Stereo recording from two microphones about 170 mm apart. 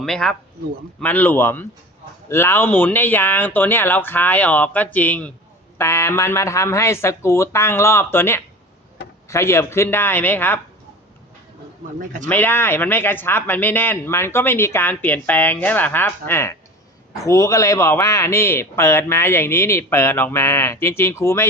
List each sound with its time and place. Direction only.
0.0 s a man's voice: 5° left (ahead or behind)
11.9 s a man's voice: 50° right (ahead or behind)
12.3 s a man's voice: 10° left (ahead or behind)